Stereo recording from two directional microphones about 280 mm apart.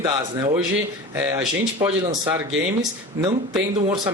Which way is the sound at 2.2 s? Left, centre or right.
Centre.